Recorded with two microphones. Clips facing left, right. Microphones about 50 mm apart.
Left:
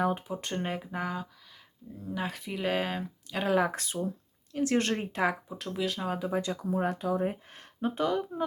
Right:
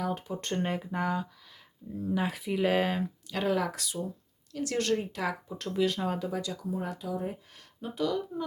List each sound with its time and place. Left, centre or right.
0.0 s speech: left
0.3 s speech: centre
3.3 s speech: centre
3.6 s speech: left
5.5 s speech: centre
6.1 s speech: centre
6.4 s speech: left